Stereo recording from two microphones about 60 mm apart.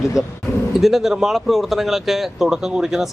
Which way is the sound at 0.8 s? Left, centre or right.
Centre.